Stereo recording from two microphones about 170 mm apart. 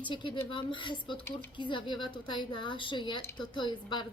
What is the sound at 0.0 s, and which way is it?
A woman's voice, 30° left (ahead or behind).